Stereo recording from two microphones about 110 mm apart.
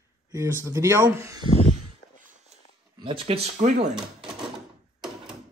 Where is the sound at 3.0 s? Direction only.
55° right (ahead or behind); by 3.9 s 85° right.